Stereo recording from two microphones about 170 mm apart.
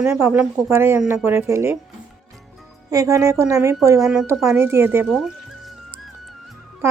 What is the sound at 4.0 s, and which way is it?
Speech, 5° right (ahead or behind).